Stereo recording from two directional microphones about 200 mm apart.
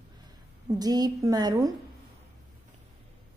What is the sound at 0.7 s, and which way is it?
A woman's voice, 20° right (ahead or behind).